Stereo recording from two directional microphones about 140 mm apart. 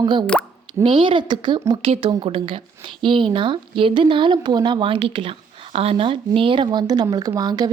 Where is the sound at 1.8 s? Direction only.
45° right (ahead or behind).